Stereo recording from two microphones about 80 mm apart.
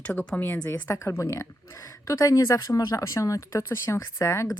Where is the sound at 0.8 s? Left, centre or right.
Left.